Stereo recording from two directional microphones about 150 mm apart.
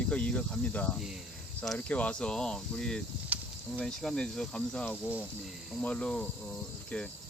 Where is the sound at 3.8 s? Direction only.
5° left (ahead or behind).